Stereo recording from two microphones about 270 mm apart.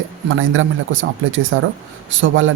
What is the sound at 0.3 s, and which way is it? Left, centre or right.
Speech, right.